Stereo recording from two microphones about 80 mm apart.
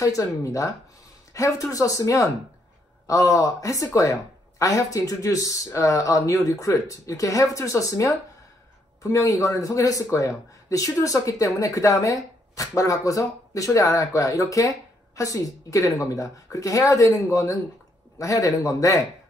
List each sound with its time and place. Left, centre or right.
0.0 s speech: left